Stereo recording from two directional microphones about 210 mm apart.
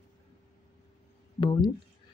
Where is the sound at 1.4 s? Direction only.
20° left (ahead or behind).